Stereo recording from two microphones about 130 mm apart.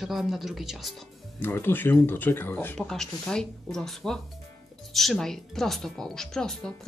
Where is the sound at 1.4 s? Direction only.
15° left (ahead or behind).